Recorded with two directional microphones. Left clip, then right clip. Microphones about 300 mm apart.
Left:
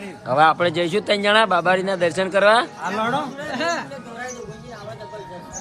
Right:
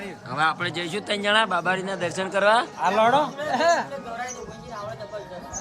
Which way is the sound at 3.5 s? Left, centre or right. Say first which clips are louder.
Right 3 dB; right.